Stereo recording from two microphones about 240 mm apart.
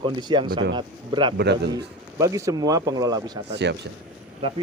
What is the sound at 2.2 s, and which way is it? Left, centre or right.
Speech, centre.